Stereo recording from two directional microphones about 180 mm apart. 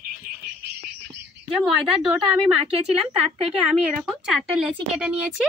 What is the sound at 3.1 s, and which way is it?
Speech, 35° right (ahead or behind).